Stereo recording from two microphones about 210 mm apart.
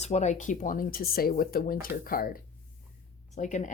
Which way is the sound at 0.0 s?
30° left (ahead or behind).